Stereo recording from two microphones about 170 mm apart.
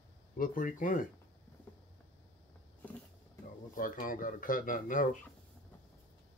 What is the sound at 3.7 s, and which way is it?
Speech, 55° left (ahead or behind).